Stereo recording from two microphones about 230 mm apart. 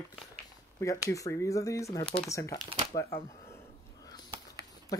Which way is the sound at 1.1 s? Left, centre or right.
Centre.